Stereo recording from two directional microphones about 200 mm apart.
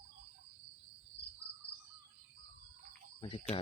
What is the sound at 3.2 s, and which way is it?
Cricket, 30° left (ahead or behind).